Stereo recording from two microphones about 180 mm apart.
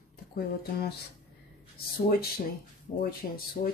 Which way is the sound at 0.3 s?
60° left (ahead or behind).